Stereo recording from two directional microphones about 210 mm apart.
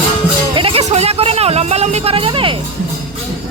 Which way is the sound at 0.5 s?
25° right (ahead or behind).